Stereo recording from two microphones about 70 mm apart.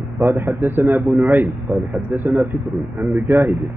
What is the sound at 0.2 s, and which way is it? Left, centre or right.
A man's voice, right.